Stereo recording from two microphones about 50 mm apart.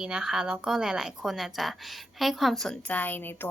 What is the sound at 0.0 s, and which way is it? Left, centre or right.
A woman's voice, centre.